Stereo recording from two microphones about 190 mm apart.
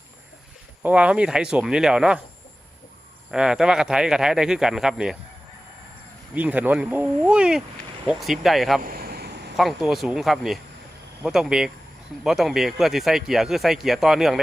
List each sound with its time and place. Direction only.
0.8 s speech: 5° right (ahead or behind)
3.3 s speech: 5° right (ahead or behind)
6.3 s speech: 10° right (ahead or behind)
8.8 s a sound: 50° right (ahead or behind)
9.6 s speech: centre (ahead or behind)